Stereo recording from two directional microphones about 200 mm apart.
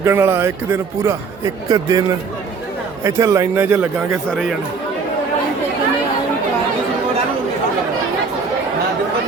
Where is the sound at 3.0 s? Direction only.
15° right (ahead or behind).